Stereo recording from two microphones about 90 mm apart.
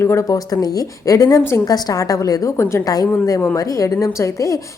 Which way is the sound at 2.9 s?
40° left (ahead or behind).